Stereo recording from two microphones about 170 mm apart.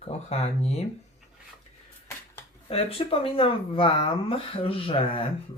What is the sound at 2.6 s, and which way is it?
Speech, 35° left (ahead or behind).